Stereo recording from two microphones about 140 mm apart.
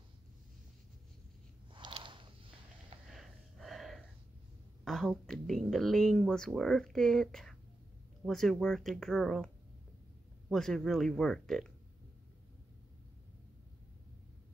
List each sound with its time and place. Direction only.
1.7 s a sound: 35° right (ahead or behind)
3.1 s snort: centre (ahead or behind)
4.8 s speech: 5° left (ahead or behind)
10.5 s speech: 5° left (ahead or behind)